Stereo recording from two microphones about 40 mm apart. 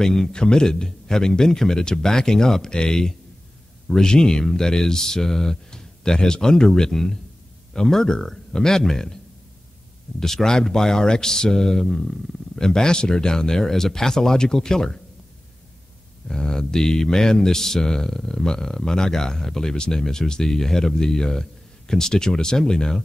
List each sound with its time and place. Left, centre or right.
0.0 s mantra: centre
10.2 s mantra: centre
16.3 s mantra: centre